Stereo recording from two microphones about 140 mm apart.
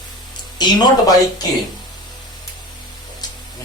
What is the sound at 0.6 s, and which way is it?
Speech, 30° left (ahead or behind).